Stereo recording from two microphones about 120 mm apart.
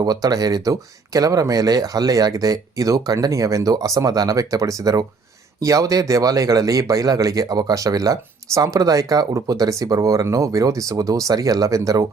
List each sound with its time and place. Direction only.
0.0 s speech: 30° right (ahead or behind)